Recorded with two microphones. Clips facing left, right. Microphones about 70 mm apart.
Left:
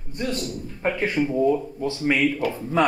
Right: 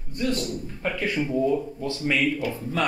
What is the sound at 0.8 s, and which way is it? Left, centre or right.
Speech, left.